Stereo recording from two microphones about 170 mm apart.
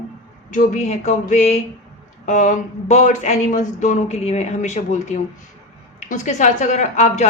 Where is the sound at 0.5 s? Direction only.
50° left (ahead or behind).